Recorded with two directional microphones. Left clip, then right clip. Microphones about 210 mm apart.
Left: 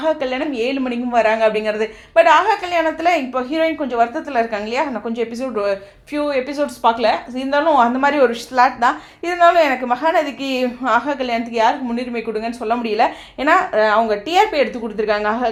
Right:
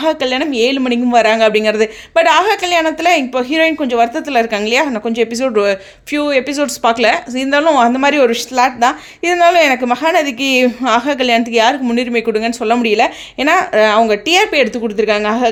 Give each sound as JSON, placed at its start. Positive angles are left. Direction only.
{"t": 0.0, "sound": "a woman's voice", "side_deg": -50}